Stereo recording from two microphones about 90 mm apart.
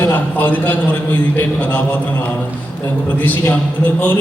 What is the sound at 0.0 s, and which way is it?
A man's voice, 20° left (ahead or behind).